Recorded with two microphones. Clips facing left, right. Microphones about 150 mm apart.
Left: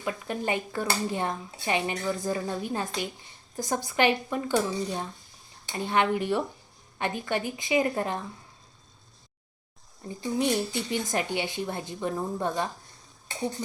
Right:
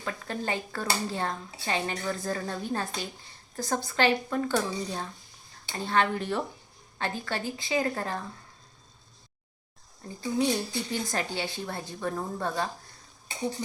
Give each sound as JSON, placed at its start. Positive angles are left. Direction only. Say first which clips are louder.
{"t": 0.0, "sound": "speech", "louder": "left 3 dB", "side_deg": 15}
{"t": 10.4, "sound": "speech", "louder": "left 2 dB", "side_deg": 20}